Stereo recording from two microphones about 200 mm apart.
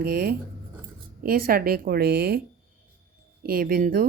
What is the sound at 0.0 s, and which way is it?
Speech, 50° right (ahead or behind).